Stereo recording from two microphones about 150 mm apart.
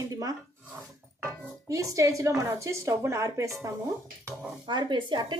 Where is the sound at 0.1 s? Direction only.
25° right (ahead or behind).